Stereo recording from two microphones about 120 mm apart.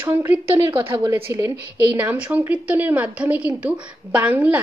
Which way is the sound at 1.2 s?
20° right (ahead or behind).